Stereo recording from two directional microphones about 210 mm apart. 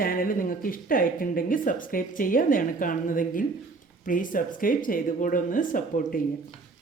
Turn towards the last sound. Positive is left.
turn(degrees=40)  # may be behind; listen again after turning